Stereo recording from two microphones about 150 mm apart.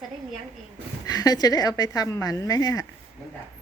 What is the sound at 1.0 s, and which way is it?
A woman's voice, 25° left (ahead or behind).